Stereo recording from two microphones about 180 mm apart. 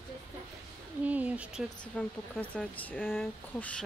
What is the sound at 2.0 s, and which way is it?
Speech, 5° left (ahead or behind).